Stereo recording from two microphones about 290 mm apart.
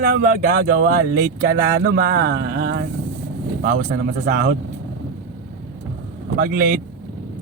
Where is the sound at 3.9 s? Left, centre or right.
Right.